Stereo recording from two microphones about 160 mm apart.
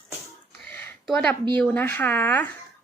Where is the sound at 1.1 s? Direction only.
5° left (ahead or behind).